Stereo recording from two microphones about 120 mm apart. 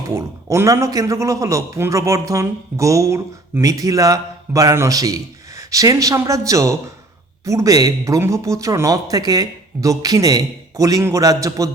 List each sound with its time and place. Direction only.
0.1 s a man's voice: 25° right (ahead or behind)